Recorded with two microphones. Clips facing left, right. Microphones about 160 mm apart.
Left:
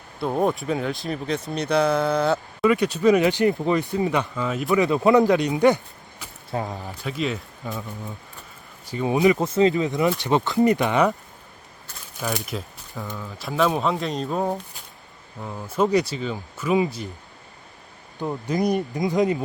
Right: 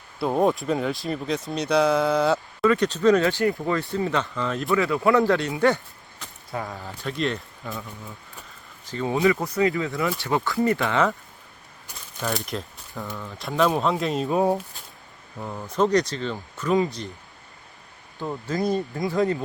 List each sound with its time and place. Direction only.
0.2 s speech: centre (ahead or behind)
2.6 s speech: 10° left (ahead or behind)
4.7 s speech: 20° left (ahead or behind)
7.0 s speech: 5° left (ahead or behind)
8.9 s speech: 15° left (ahead or behind)
12.2 s speech: centre (ahead or behind)
15.4 s speech: centre (ahead or behind)
18.2 s speech: 15° left (ahead or behind)